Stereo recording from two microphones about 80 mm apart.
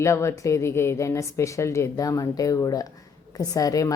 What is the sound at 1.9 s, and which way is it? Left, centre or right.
A woman's voice, left.